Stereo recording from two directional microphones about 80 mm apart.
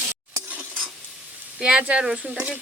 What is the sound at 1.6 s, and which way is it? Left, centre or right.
Speech, centre.